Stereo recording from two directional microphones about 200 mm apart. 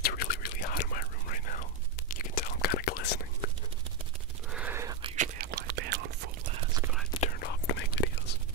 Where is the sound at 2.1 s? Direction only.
45° left (ahead or behind).